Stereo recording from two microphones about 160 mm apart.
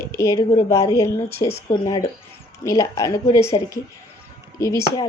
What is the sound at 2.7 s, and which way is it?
Speech, 20° left (ahead or behind).